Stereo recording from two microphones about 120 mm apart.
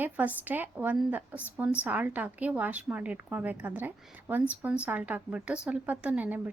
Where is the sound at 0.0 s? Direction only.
15° right (ahead or behind).